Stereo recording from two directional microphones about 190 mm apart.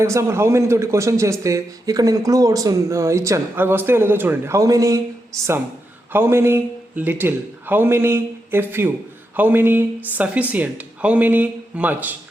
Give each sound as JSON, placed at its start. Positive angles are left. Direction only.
{"t": 0.0, "sound": "speech", "side_deg": -15}